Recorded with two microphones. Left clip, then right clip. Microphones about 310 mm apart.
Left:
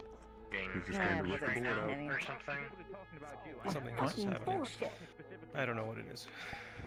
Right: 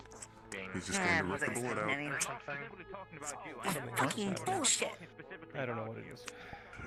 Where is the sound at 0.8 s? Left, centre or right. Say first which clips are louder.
Right 5 dB; right.